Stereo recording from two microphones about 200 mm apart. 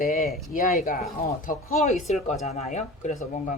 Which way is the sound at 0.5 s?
45° left (ahead or behind).